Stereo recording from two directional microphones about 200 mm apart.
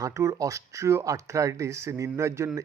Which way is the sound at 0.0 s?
15° right (ahead or behind).